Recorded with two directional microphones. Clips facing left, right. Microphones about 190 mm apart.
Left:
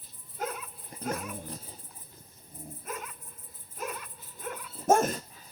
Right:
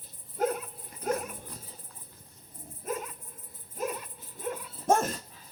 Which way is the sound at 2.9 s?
30° right (ahead or behind).